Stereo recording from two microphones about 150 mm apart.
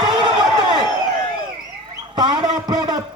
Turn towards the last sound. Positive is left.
turn(degrees=-25)  # may be behind; listen again after turning